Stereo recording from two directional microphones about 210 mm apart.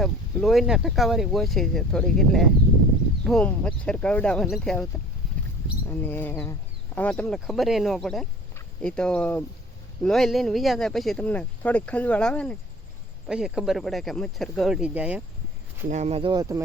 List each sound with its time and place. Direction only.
0.0 s speech: centre (ahead or behind)
5.9 s speech: 10° left (ahead or behind); by 15.2 s 5° right (ahead or behind)
15.9 s speech: 30° right (ahead or behind); by 16.6 s 15° right (ahead or behind)